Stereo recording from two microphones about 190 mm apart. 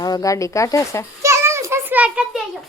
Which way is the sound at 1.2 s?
15° right (ahead or behind).